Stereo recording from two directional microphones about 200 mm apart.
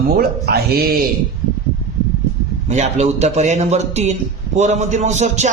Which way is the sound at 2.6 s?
35° right (ahead or behind).